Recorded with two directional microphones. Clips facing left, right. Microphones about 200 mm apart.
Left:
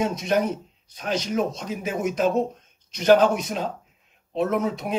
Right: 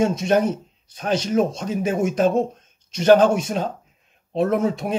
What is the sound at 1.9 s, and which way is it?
Speech, 50° right (ahead or behind).